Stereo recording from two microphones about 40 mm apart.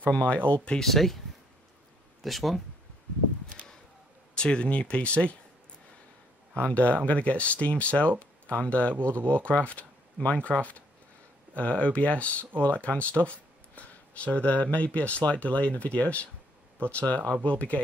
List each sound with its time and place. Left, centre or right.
0.1 s speech: left
0.7 s speech: centre
2.2 s speech: centre
4.4 s speech: left
6.7 s speech: left
8.9 s speech: right
9.3 s speech: left